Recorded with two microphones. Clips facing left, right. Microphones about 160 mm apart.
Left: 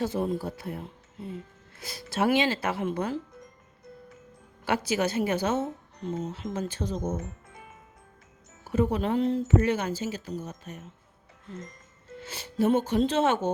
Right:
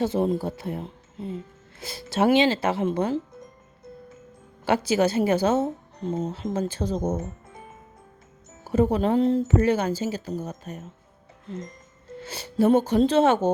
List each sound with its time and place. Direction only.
0.0 s speech: 25° right (ahead or behind)
4.6 s a woman's voice: 30° right (ahead or behind)
12.2 s a woman's voice: 35° right (ahead or behind)